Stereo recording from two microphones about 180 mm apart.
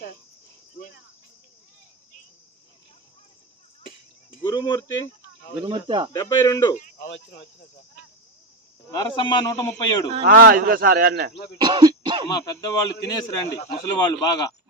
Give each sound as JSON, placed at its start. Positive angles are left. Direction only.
{"t": 4.4, "sound": "speech", "side_deg": 25}
{"t": 5.6, "sound": "speech", "side_deg": -25}
{"t": 6.1, "sound": "speech", "side_deg": 20}
{"t": 7.0, "sound": "speech", "side_deg": 80}
{"t": 8.9, "sound": "speech", "side_deg": 20}
{"t": 10.2, "sound": "speech", "side_deg": -55}
{"t": 11.5, "sound": "throat clearing", "side_deg": -25}
{"t": 12.3, "sound": "speech", "side_deg": 20}